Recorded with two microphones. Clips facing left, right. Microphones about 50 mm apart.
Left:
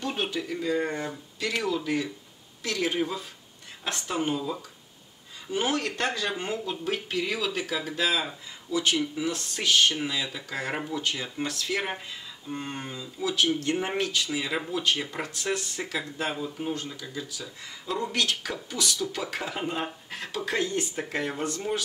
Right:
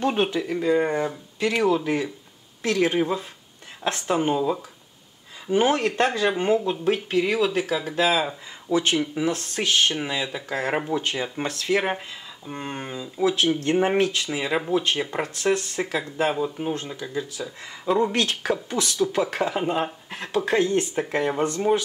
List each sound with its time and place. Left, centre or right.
0.0 s speech: right
5.9 s speech: centre
8.6 s speech: right
9.1 s speech: right
10.9 s speech: right
13.2 s speech: right
14.1 s speech: right
14.7 s speech: right
15.2 s speech: centre; by 19.2 s right
19.4 s speech: centre